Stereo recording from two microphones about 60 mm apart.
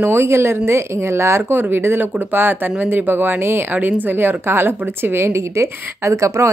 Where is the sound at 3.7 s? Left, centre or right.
Right.